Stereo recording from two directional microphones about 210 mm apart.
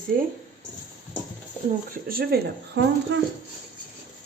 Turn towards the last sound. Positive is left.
turn(degrees=-55)  # may be behind; listen again after turning